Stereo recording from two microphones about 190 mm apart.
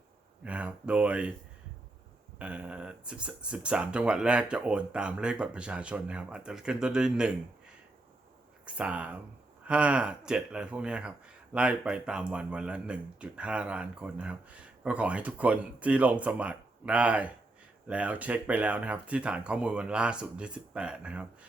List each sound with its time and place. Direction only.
0.4 s speech: 5° right (ahead or behind)
2.4 s speech: 5° right (ahead or behind)
8.6 s speech: 5° right (ahead or behind)